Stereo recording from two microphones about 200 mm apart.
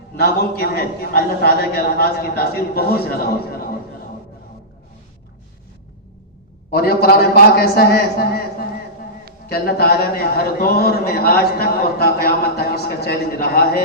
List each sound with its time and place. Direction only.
0.2 s a man's voice: 50° left (ahead or behind)
6.7 s a man's voice: 50° left (ahead or behind)
9.5 s a man's voice: 50° left (ahead or behind)